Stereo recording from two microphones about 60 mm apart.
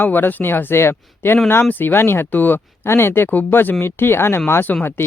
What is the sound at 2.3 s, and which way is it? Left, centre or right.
Speech, left.